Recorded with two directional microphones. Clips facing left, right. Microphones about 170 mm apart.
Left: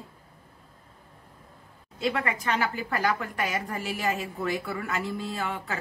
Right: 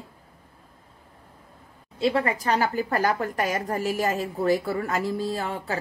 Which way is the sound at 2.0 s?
35° right (ahead or behind).